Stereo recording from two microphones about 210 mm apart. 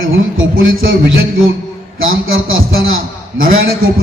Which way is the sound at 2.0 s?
70° right (ahead or behind).